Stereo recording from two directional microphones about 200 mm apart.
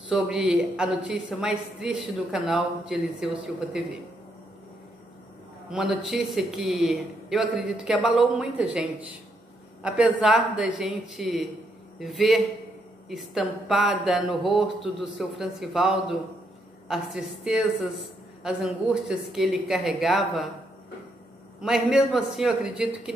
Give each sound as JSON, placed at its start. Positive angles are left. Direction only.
{"t": 0.1, "sound": "speech", "side_deg": -5}
{"t": 5.7, "sound": "speech", "side_deg": -5}
{"t": 21.5, "sound": "speech", "side_deg": 0}